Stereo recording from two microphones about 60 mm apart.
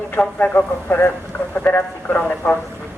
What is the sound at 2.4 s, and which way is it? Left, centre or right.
Speech, left.